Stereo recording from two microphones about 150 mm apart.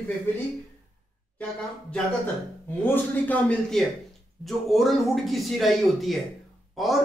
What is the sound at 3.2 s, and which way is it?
A man's voice, 5° left (ahead or behind).